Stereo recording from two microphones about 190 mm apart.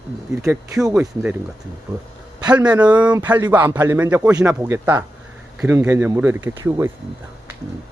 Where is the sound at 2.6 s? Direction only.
20° right (ahead or behind).